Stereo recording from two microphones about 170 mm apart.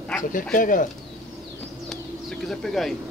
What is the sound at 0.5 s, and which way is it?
Speech, 50° left (ahead or behind).